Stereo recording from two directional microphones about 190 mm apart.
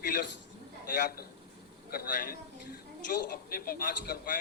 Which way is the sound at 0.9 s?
50° left (ahead or behind).